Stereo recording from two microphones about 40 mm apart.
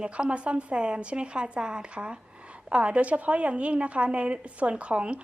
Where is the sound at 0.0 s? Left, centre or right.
Right.